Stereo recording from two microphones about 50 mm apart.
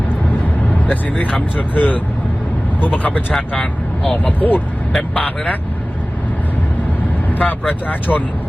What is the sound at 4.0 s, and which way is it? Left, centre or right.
Speech, centre.